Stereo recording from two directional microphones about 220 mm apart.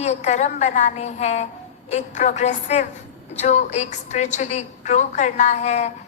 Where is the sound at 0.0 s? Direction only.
30° left (ahead or behind).